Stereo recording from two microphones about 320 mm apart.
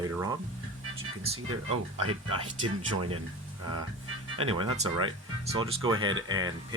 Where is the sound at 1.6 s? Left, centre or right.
Right.